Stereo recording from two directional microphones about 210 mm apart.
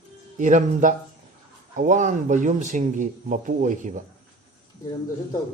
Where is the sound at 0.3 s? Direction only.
35° right (ahead or behind).